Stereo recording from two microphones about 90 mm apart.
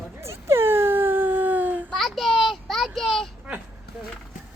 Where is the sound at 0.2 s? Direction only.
30° right (ahead or behind).